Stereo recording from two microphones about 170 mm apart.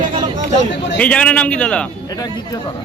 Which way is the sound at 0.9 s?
5° left (ahead or behind).